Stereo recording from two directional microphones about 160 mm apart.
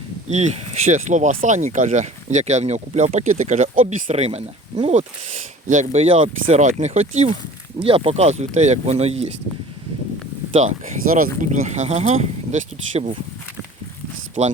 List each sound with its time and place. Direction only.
0.3 s speech: 45° right (ahead or behind)
10.6 s speech: 50° right (ahead or behind)